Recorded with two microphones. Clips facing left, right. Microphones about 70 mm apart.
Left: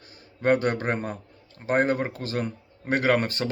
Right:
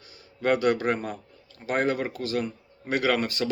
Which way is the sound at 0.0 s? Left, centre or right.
Left.